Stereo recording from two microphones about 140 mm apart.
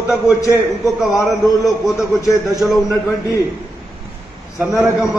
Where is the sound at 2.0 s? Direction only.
20° left (ahead or behind).